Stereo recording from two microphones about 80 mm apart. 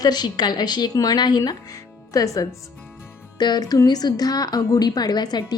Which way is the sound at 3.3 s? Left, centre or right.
Left.